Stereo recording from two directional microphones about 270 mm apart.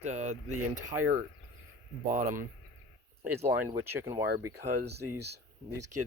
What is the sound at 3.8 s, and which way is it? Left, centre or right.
Speech, centre.